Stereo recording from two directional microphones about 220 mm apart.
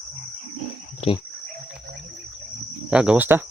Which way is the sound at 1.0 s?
25° left (ahead or behind).